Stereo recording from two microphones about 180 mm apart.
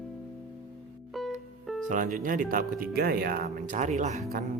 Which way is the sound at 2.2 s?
50° right (ahead or behind).